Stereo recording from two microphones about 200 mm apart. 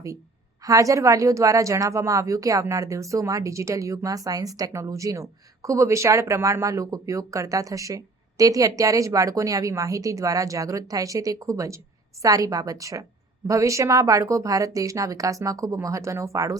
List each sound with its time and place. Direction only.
0.6 s speech: 15° right (ahead or behind)